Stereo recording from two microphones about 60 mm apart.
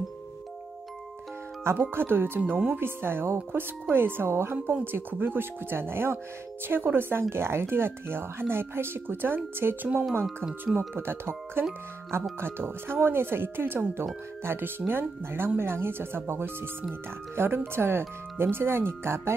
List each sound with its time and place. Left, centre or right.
1.6 s speech: right
10.8 s speech: right